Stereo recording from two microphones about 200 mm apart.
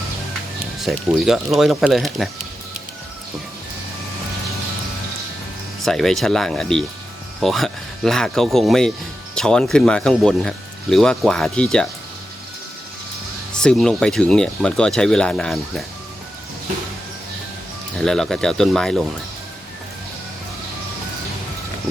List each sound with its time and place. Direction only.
0.8 s speech: centre (ahead or behind)
5.8 s speech: centre (ahead or behind)
13.5 s speech: 5° left (ahead or behind)
17.9 s speech: 5° left (ahead or behind)